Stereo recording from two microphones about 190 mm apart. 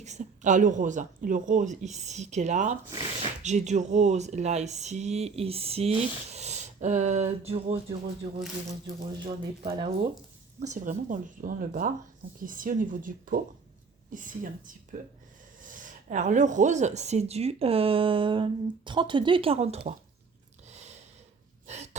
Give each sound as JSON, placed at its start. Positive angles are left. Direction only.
{"t": 0.0, "sound": "speech", "side_deg": -40}
{"t": 2.9, "sound": "speech", "side_deg": -25}
{"t": 3.4, "sound": "speech", "side_deg": -40}
{"t": 9.2, "sound": "speech", "side_deg": -25}
{"t": 10.6, "sound": "speech", "side_deg": -40}
{"t": 20.7, "sound": "a sound", "side_deg": -35}